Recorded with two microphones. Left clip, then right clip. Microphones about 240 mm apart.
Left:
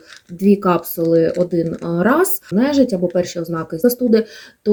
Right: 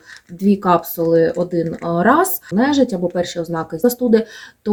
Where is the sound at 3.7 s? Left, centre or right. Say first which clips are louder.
Left 1 dB; left.